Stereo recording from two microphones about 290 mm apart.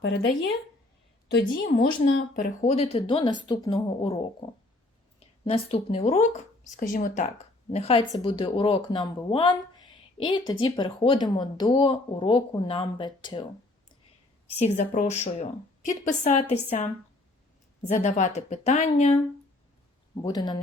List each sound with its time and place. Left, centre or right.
0.0 s a woman's voice: left; by 13.4 s centre
14.8 s speech: left
18.0 s speech: left
20.2 s speech: centre